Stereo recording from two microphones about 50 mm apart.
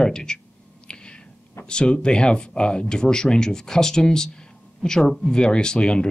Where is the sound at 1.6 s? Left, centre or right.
Centre.